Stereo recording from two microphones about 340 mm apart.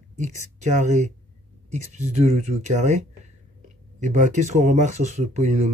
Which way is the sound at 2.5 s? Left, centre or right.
Centre.